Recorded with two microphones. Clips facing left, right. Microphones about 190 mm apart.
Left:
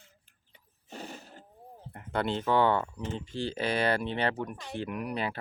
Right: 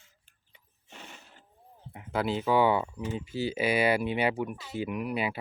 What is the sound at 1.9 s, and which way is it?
Speech, 5° right (ahead or behind).